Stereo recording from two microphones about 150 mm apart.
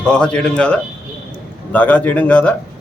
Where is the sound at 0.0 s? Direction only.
5° left (ahead or behind).